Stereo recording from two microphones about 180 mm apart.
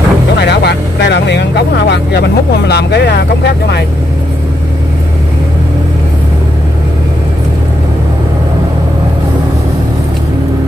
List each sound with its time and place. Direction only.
0.4 s speech: 65° left (ahead or behind)